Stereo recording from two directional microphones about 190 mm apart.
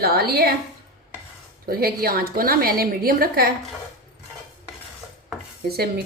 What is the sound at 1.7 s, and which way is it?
A woman's voice, 50° right (ahead or behind).